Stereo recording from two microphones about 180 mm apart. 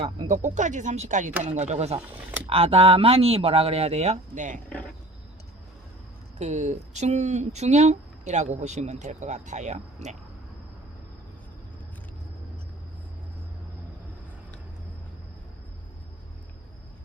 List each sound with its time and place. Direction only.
0.0 s speech: 45° right (ahead or behind)
6.4 s speech: 40° right (ahead or behind)